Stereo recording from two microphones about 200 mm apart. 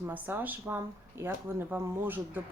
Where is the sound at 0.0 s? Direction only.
10° right (ahead or behind).